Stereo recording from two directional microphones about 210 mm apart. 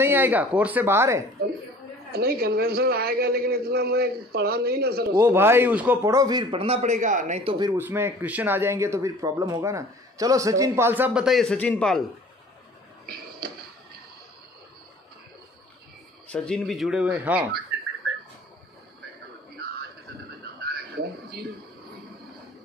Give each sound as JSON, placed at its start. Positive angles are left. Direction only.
{"t": 0.0, "sound": "speech", "side_deg": -10}
{"t": 2.1, "sound": "a man's voice", "side_deg": -50}
{"t": 5.1, "sound": "a man's voice", "side_deg": -10}
{"t": 7.7, "sound": "speech", "side_deg": -10}
{"t": 13.0, "sound": "a sound", "side_deg": -45}
{"t": 16.3, "sound": "speech", "side_deg": 5}
{"t": 20.6, "sound": "a sound", "side_deg": -50}